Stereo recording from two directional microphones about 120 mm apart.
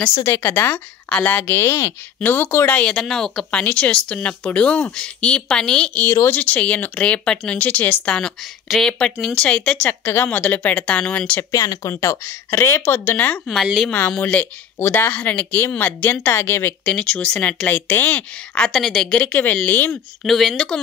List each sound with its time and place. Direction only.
0.2 s speech: 20° left (ahead or behind)
6.0 s speech: 20° left (ahead or behind)
11.5 s speech: 30° left (ahead or behind)
20.2 s speech: centre (ahead or behind)